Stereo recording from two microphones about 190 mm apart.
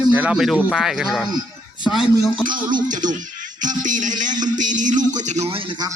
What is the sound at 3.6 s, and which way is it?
A man's voice, 40° right (ahead or behind).